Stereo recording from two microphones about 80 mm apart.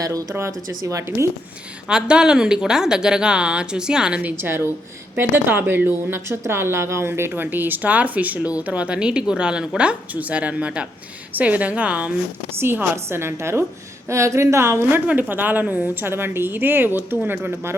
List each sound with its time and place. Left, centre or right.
0.0 s a woman's voice: right
1.9 s a woman's voice: centre; by 17.7 s right